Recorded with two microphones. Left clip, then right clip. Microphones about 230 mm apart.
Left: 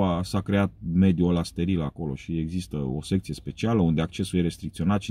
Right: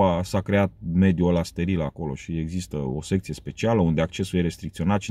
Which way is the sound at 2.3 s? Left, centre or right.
Right.